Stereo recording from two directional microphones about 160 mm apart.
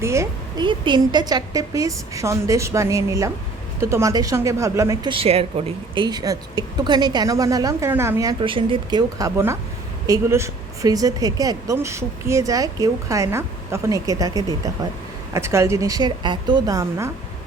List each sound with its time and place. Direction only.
0.0 s a sound: 20° right (ahead or behind)
0.6 s a woman's voice: 30° right (ahead or behind)
5.1 s a woman's voice: 35° right (ahead or behind); by 8.4 s 20° right (ahead or behind)
8.4 s a woman's voice: 35° right (ahead or behind)